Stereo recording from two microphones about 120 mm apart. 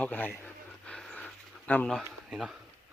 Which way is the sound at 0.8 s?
10° left (ahead or behind).